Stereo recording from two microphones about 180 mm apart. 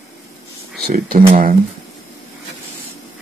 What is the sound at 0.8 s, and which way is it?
Speech, 50° right (ahead or behind).